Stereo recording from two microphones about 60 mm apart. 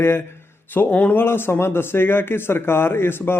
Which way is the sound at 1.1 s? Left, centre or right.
Left.